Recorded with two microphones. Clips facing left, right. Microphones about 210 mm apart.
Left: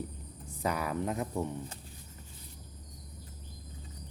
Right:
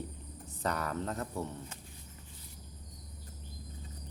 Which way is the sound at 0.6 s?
10° left (ahead or behind).